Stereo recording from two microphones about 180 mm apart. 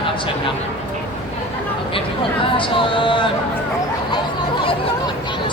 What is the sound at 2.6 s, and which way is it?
Speech, 30° left (ahead or behind).